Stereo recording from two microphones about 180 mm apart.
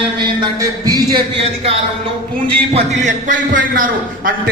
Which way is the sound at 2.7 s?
45° right (ahead or behind).